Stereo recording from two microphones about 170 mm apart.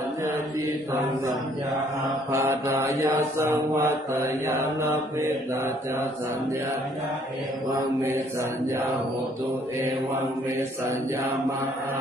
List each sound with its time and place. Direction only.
2.3 s mantra: 15° right (ahead or behind)
8.0 s mantra: 15° right (ahead or behind)